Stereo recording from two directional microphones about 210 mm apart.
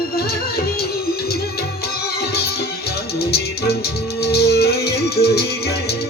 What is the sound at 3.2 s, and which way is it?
Music, 50° left (ahead or behind).